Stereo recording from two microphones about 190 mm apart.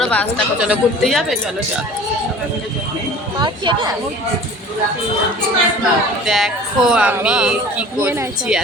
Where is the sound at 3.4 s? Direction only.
25° right (ahead or behind).